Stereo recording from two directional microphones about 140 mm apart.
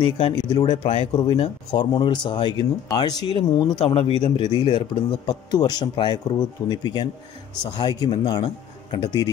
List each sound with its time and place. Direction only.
0.0 s a man's voice: 35° left (ahead or behind)
3.7 s a man's voice: 40° left (ahead or behind)